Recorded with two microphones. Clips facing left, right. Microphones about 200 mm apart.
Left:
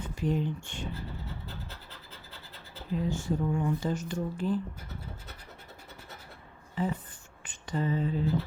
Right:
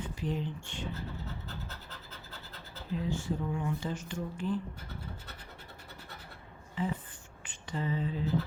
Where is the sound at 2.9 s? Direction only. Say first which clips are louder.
Left 3 dB; 45° left (ahead or behind).